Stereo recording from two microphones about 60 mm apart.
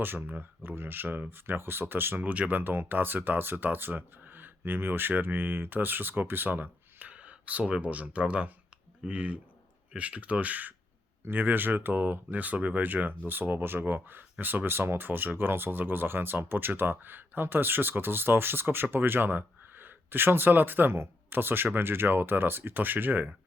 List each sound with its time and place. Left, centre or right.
0.0 s speech: right